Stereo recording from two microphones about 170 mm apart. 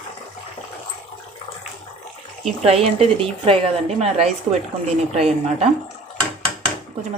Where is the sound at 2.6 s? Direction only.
35° right (ahead or behind).